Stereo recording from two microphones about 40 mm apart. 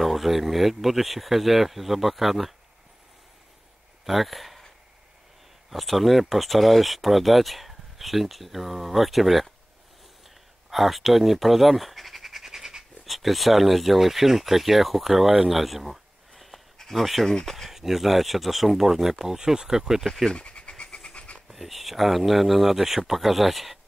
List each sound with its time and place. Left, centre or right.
0.0 s speech: centre
4.0 s speech: centre
5.7 s speech: centre
10.7 s speech: centre
16.7 s a sound: centre
17.6 s speech: centre
20.2 s pant: left
21.5 s speech: centre